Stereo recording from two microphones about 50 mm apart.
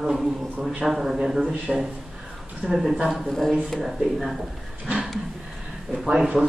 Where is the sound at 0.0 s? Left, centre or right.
Centre.